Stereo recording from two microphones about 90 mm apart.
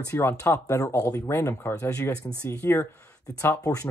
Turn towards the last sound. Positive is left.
turn(degrees=35)  # may be behind; listen again after turning